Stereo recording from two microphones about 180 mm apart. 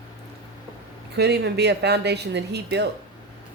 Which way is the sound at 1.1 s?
65° right (ahead or behind).